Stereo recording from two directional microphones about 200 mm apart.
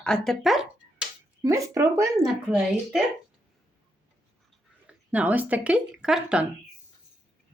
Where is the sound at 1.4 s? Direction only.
15° right (ahead or behind).